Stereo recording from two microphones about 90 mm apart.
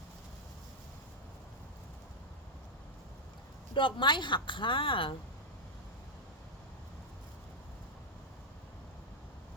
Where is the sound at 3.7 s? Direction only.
65° left (ahead or behind).